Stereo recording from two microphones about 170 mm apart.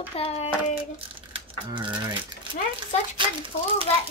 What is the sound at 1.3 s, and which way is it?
Speech, 30° right (ahead or behind).